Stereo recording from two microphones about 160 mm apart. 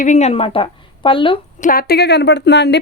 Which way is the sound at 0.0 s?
45° left (ahead or behind).